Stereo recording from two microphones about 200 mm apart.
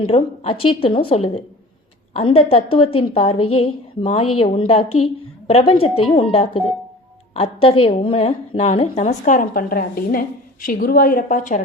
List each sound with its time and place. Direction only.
0.0 s a woman's voice: 30° left (ahead or behind)